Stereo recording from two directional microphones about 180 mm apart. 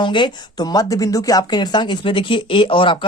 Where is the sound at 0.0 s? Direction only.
25° left (ahead or behind).